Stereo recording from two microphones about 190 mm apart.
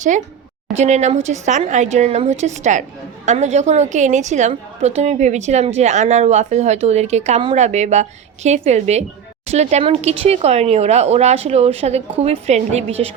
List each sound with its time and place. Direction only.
0.7 s a woman's voice: 35° right (ahead or behind)